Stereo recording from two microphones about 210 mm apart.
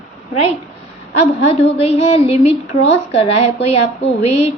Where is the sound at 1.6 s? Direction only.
25° left (ahead or behind).